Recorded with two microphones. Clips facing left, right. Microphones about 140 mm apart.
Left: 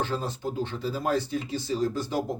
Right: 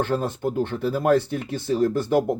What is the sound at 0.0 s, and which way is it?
Speech, 55° right (ahead or behind).